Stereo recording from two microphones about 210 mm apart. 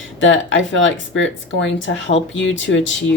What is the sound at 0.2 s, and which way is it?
Speech, 60° left (ahead or behind).